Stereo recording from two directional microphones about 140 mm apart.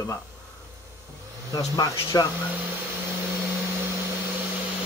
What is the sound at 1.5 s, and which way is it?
Speech, 30° left (ahead or behind).